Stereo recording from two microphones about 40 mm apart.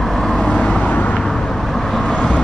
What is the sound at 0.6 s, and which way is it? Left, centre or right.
Vehicle, left.